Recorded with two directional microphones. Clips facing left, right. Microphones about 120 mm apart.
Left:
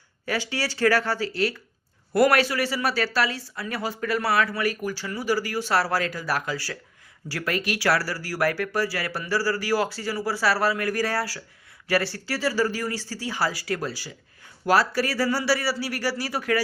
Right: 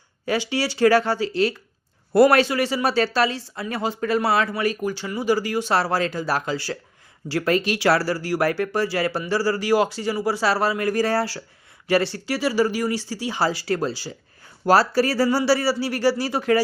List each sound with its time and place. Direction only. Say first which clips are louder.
0.3 s speech: right 5 dB; 15° right (ahead or behind)